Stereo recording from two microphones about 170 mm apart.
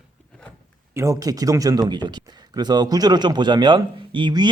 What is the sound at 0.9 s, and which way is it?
Speech, 20° right (ahead or behind).